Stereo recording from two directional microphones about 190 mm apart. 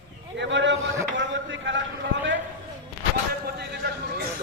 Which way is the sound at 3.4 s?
55° right (ahead or behind).